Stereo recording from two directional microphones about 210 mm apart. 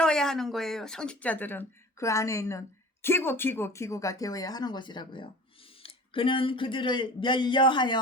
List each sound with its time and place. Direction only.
0.0 s speech: 5° left (ahead or behind); by 8.0 s 20° left (ahead or behind)